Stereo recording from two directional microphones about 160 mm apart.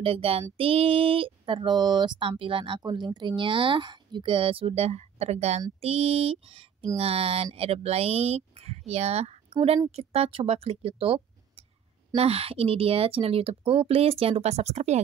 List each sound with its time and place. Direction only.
0.0 s speech: 35° right (ahead or behind)